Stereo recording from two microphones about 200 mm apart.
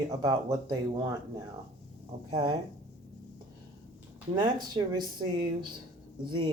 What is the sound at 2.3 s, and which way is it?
Speech, 20° right (ahead or behind).